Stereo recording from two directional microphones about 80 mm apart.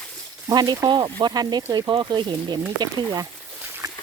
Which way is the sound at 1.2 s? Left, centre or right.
Right.